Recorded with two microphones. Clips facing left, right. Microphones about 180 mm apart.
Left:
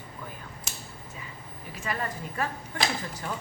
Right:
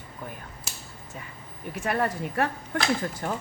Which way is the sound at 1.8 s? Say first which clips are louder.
Right 6 dB; 65° right (ahead or behind).